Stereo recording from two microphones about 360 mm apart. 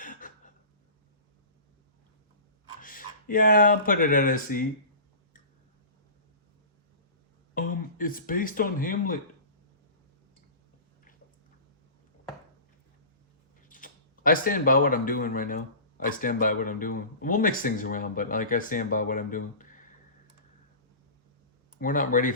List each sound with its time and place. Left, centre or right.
0.0 s a sound: left
2.8 s speech: left
7.5 s a sound: left
7.9 s speech: left
13.7 s speech: left
21.8 s speech: left